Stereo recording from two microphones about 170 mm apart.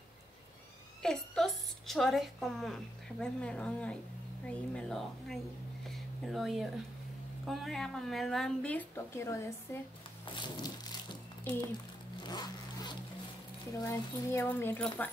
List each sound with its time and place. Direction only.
1.0 s a woman's voice: 5° left (ahead or behind)
10.3 s a sound: 25° left (ahead or behind)
12.2 s vehicle: 25° left (ahead or behind)
13.8 s speech: 15° left (ahead or behind)